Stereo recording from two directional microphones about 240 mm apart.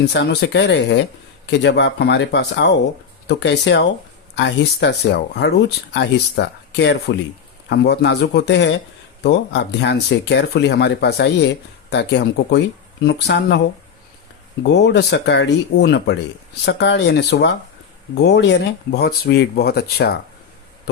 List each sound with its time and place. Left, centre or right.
0.0 s speech: left
14.6 s speech: left